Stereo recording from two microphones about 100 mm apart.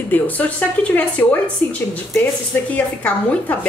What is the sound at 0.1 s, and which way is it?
A woman's voice, 15° left (ahead or behind).